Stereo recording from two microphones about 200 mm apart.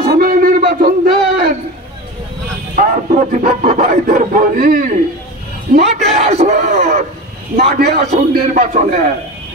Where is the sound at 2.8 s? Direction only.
45° right (ahead or behind).